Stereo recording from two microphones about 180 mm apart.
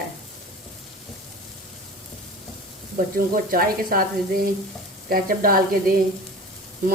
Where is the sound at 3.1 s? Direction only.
50° right (ahead or behind).